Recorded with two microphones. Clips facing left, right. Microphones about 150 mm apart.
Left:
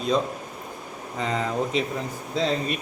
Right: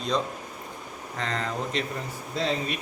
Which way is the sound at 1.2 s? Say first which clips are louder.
Left 5 dB; 5° left (ahead or behind).